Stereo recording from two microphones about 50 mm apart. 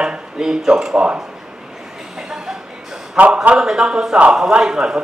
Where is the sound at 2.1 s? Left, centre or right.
Centre.